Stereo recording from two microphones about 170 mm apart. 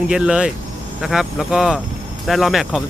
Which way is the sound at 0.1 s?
5° right (ahead or behind).